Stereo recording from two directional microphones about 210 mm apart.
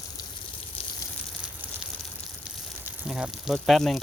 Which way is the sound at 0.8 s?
25° left (ahead or behind).